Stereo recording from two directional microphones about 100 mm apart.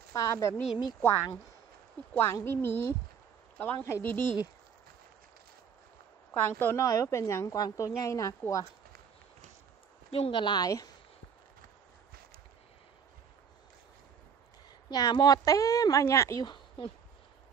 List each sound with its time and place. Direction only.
0.1 s a woman's voice: 35° left (ahead or behind)
6.3 s a woman's voice: 20° left (ahead or behind)
10.1 s speech: 75° left (ahead or behind)
10.4 s a woman's voice: 45° left (ahead or behind)
14.9 s a woman's voice: 40° left (ahead or behind)
16.4 s speech: 55° left (ahead or behind)